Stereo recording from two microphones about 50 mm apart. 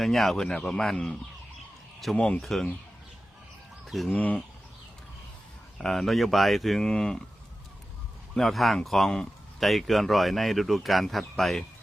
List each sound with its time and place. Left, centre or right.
0.0 s speech: centre
2.1 s speech: left
2.4 s speech: centre
3.8 s speech: centre
4.1 s speech: left
5.8 s speech: centre
6.8 s speech: centre
8.4 s speech: centre